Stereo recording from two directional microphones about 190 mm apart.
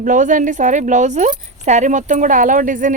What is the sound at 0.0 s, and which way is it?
Speech, 40° right (ahead or behind).